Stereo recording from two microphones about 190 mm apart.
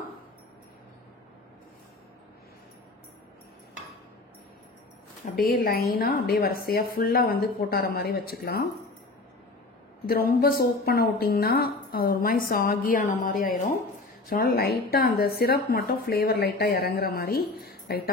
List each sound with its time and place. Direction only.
5.5 s speech: 50° left (ahead or behind)
10.0 s speech: 55° left (ahead or behind)